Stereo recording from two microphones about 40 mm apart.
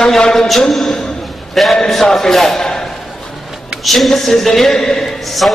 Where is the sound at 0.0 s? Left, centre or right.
Centre.